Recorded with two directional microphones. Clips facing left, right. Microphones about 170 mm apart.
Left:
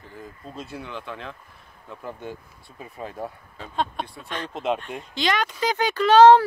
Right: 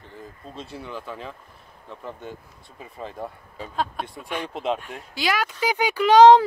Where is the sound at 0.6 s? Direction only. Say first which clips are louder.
Even; centre (ahead or behind).